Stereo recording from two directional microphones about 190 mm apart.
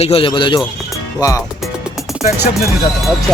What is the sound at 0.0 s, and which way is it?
Speech, 30° left (ahead or behind).